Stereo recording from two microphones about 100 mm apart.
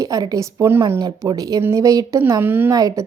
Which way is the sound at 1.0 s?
40° right (ahead or behind).